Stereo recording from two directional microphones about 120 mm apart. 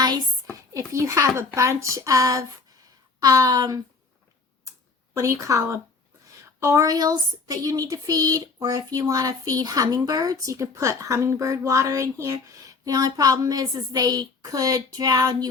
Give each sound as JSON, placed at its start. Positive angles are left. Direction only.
{"t": 0.7, "sound": "a woman's voice", "side_deg": -25}
{"t": 5.1, "sound": "a woman's voice", "side_deg": -25}